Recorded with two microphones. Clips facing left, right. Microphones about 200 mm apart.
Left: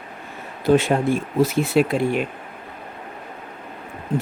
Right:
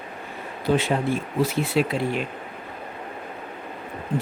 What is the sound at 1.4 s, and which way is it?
Speech, 45° left (ahead or behind).